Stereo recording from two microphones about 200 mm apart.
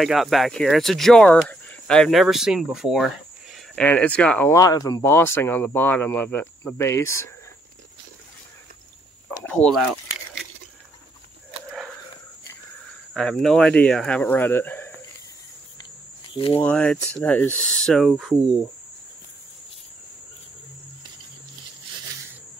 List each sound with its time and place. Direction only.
0.0 s speech: centre (ahead or behind)
9.4 s speech: 5° left (ahead or behind)
11.7 s walk: centre (ahead or behind)
13.1 s speech: centre (ahead or behind)
16.3 s speech: 25° left (ahead or behind)
16.6 s speech: 5° left (ahead or behind)